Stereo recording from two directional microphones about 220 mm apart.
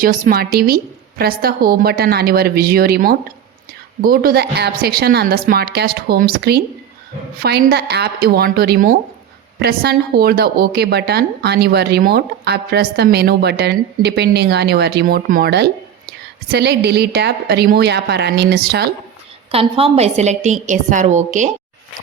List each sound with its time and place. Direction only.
0.0 s speech: 40° right (ahead or behind)
19.5 s a woman's voice: 25° right (ahead or behind)